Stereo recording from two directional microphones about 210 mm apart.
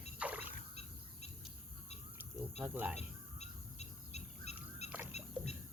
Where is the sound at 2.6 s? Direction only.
5° right (ahead or behind).